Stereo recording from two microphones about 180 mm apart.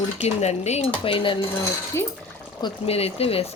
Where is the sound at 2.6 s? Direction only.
35° left (ahead or behind).